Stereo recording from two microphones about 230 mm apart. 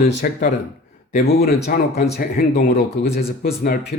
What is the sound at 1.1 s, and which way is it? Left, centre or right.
Speech, left.